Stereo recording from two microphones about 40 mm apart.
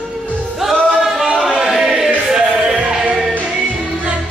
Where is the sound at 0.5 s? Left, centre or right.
Centre.